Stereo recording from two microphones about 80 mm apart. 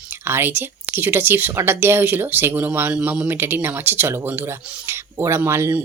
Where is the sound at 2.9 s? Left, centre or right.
Centre; by 5.8 s right.